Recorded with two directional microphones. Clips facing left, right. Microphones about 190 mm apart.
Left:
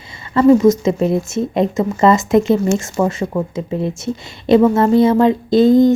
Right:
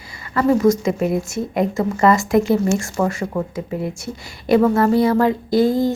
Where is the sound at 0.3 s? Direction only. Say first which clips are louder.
Left 5 dB; 20° left (ahead or behind).